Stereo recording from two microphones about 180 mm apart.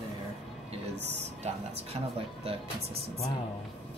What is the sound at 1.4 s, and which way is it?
Speech, 35° right (ahead or behind).